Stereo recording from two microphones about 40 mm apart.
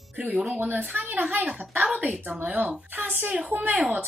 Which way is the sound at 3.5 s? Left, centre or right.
Right.